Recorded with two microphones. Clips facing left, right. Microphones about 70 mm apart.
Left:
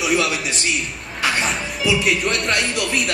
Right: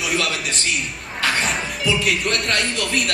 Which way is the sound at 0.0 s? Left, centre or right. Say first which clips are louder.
Left 3 dB; centre.